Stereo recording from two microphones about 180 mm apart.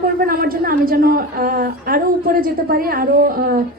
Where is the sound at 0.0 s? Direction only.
55° right (ahead or behind).